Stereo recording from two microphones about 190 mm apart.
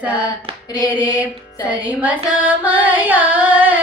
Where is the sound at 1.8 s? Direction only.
10° right (ahead or behind).